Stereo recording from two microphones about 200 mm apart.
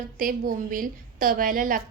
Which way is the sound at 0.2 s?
45° right (ahead or behind).